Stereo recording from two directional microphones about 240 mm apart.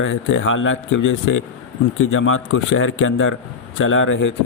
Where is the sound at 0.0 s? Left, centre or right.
Left.